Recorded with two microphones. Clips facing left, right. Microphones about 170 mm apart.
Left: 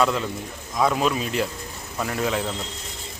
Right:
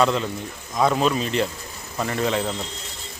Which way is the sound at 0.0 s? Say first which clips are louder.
Right 2 dB; 5° left (ahead or behind).